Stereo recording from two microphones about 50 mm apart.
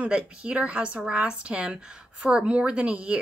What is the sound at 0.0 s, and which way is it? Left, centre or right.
Speech, right.